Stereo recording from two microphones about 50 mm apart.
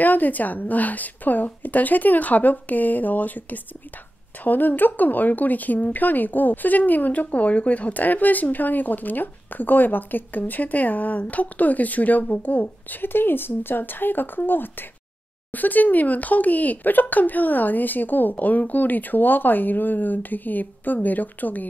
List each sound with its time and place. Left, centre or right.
0.0 s speech: left